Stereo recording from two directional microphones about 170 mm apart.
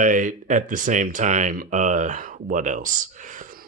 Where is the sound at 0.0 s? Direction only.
50° right (ahead or behind).